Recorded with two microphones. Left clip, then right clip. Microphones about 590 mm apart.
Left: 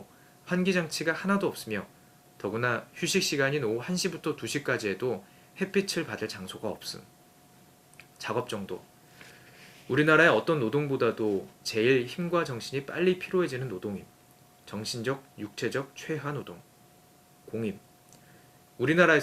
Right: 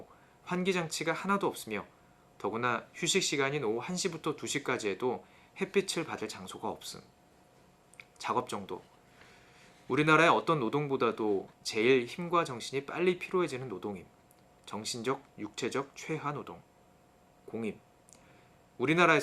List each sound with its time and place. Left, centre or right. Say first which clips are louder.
0.4 s speech: left 4 dB; left
9.9 s speech: left 3 dB; left
18.8 s speech: left 3 dB; left